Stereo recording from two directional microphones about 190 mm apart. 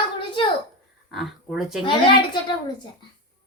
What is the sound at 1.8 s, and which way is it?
Speech, 25° left (ahead or behind).